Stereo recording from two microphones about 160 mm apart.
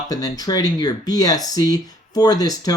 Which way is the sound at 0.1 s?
25° left (ahead or behind).